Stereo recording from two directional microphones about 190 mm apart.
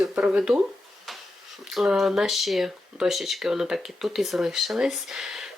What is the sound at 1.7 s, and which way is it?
Speech, centre (ahead or behind).